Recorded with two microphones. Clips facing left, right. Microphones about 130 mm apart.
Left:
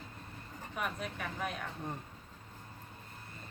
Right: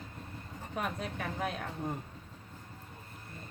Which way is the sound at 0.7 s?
30° right (ahead or behind).